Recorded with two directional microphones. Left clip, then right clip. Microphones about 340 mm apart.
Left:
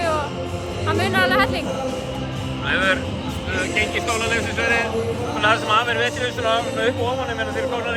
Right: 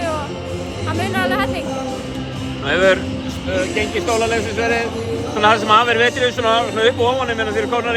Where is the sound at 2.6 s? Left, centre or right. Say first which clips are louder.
Right 5 dB; centre.